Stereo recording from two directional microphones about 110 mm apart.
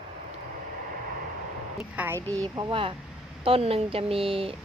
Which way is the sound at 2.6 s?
50° right (ahead or behind).